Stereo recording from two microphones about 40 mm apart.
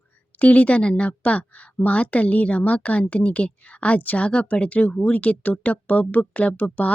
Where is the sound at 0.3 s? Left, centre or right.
Left.